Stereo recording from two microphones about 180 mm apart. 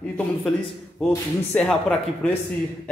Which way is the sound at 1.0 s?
Centre (ahead or behind).